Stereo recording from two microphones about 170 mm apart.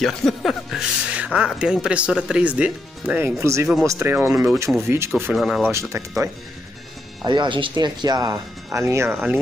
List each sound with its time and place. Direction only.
0.0 s speech: centre (ahead or behind); by 5.1 s 15° right (ahead or behind)
5.2 s speech: 5° right (ahead or behind)
5.7 s speech: 15° right (ahead or behind)
7.2 s speech: 30° right (ahead or behind); by 9.4 s 10° right (ahead or behind)